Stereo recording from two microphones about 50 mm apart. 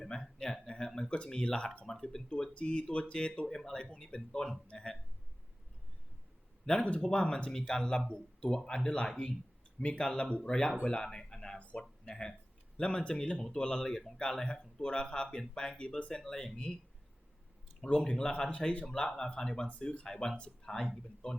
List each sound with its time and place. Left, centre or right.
0.0 s a man's voice: centre
2.5 s speech: left
7.0 s speech: centre
11.6 s a sound: left
12.7 s speech: centre
17.8 s speech: left